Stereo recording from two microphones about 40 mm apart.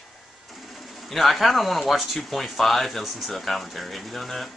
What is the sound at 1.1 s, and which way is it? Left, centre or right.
Speech, centre.